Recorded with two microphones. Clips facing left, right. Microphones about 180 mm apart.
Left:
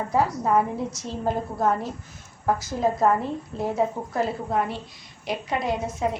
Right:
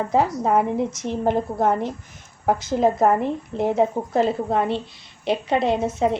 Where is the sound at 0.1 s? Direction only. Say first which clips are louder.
Right 1 dB; 20° right (ahead or behind).